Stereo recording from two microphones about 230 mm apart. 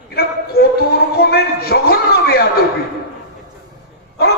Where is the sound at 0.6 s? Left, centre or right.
Left.